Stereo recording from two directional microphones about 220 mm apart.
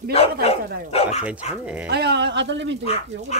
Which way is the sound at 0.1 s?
25° left (ahead or behind).